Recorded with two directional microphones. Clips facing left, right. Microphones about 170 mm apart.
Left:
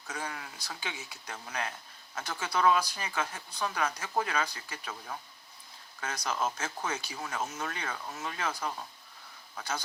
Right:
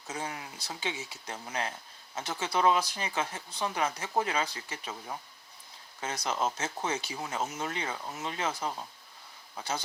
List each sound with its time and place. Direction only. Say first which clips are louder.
0.1 s speech: right 2 dB; 20° right (ahead or behind)